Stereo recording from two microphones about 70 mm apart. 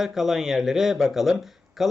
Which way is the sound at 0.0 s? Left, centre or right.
Centre.